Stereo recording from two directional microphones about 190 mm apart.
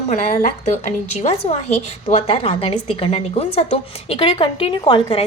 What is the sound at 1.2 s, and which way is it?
A woman's voice, 35° left (ahead or behind).